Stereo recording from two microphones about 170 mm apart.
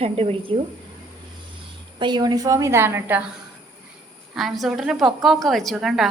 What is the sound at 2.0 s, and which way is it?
A woman's voice, 25° right (ahead or behind).